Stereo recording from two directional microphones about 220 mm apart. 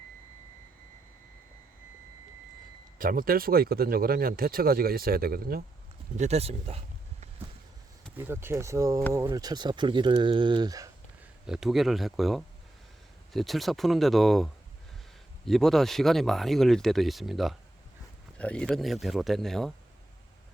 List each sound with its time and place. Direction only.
3.0 s speech: 40° right (ahead or behind)
6.1 s speech: 30° right (ahead or behind)
8.1 s speech: 10° right (ahead or behind)
11.4 s speech: centre (ahead or behind)